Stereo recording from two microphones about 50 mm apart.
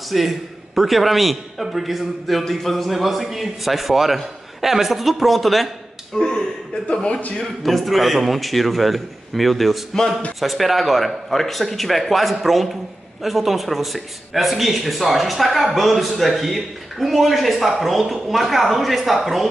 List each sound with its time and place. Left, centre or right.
0.1 s a man's voice: centre
6.1 s speech: centre
7.2 s a man's voice: left
7.6 s a man's voice: centre